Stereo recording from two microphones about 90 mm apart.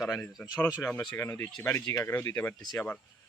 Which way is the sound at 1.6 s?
30° left (ahead or behind).